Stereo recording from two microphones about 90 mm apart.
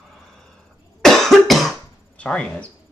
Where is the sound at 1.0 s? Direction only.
5° left (ahead or behind).